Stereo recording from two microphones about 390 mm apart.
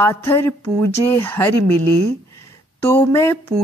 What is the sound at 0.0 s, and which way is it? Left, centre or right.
Speech, centre.